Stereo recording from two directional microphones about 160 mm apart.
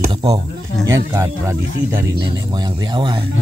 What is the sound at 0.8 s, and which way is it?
Speech, 20° right (ahead or behind).